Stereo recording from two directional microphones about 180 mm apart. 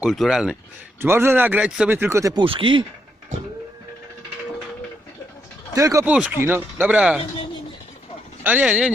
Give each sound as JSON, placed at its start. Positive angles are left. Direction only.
{"t": 0.0, "sound": "speech", "side_deg": 0}
{"t": 1.0, "sound": "speech", "side_deg": -15}
{"t": 2.4, "sound": "speech", "side_deg": -30}
{"t": 5.7, "sound": "speech", "side_deg": -15}
{"t": 8.4, "sound": "speech", "side_deg": -10}